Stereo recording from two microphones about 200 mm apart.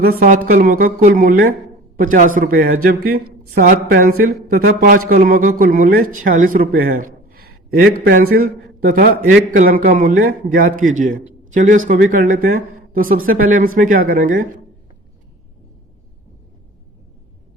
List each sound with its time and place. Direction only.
0.0 s a man's voice: 45° right (ahead or behind)